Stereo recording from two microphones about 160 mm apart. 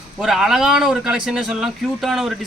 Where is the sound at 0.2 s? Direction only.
Centre (ahead or behind).